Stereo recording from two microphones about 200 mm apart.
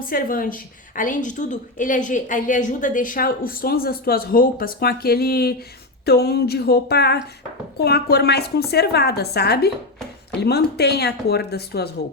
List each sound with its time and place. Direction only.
0.0 s a woman's voice: 45° left (ahead or behind)